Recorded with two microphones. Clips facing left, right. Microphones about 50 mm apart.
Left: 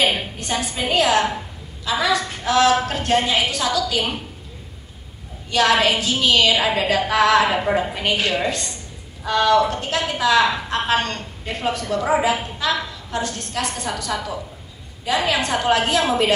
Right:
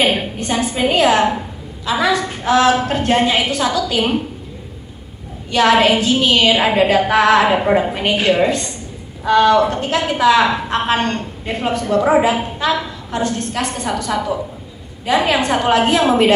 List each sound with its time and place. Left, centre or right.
0.0 s a woman's voice: right
5.5 s a woman's voice: right